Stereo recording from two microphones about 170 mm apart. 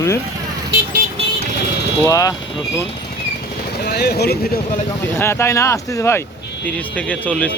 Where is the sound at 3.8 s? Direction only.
70° left (ahead or behind).